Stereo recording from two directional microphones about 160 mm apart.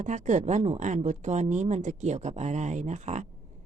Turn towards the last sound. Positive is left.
turn(degrees=-45)  # may be behind; listen again after turning